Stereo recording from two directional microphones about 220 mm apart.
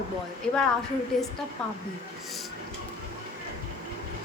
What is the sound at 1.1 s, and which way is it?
Speech, centre (ahead or behind).